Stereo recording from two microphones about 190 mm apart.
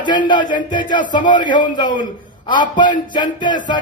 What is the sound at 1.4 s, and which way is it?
Speech, 45° left (ahead or behind).